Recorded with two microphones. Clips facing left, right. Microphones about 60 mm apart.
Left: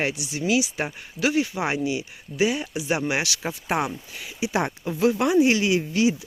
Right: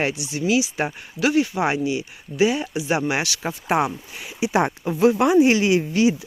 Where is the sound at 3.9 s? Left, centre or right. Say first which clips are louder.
Right 2 dB; right.